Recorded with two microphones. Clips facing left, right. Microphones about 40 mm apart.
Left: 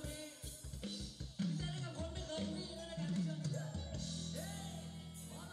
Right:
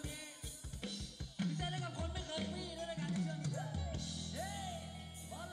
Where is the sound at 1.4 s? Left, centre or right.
Right.